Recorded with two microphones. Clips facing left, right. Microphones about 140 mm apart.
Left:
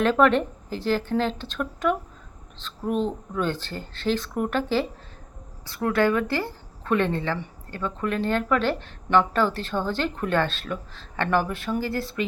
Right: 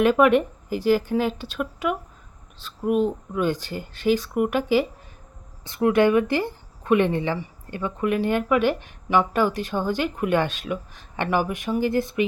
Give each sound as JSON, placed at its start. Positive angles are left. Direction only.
{"t": 0.0, "sound": "speech", "side_deg": -10}